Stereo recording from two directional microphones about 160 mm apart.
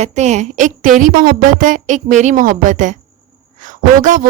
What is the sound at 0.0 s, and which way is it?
A woman's voice, 45° right (ahead or behind).